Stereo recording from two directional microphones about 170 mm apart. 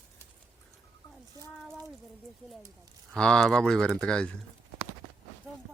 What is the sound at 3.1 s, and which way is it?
A man's voice, 5° left (ahead or behind).